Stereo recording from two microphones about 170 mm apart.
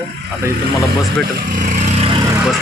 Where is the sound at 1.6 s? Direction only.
40° right (ahead or behind).